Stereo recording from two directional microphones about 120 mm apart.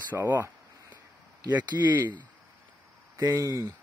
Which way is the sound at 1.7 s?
25° right (ahead or behind).